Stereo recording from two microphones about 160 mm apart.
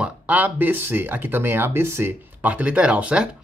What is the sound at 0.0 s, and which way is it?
Speech, 10° right (ahead or behind).